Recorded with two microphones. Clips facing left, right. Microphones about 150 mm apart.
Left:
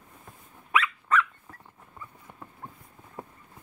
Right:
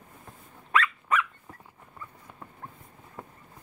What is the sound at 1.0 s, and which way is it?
Dog, 10° right (ahead or behind).